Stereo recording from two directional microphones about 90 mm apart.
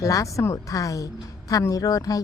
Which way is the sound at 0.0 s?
35° left (ahead or behind).